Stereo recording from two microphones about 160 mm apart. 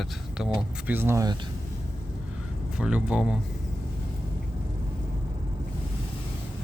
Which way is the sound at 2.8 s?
5° right (ahead or behind).